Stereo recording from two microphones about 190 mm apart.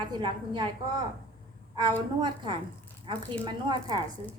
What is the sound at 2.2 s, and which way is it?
A woman's voice, 25° right (ahead or behind).